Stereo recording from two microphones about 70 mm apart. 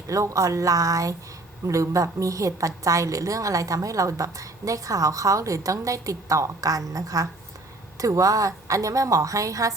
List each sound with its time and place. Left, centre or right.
0.1 s a woman's voice: right